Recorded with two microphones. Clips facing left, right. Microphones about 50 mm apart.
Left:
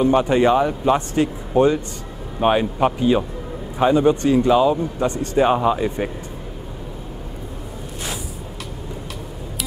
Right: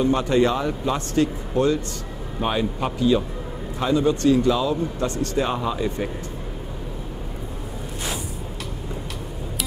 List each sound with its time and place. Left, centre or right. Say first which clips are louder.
0.0 s speech: left 3 dB; left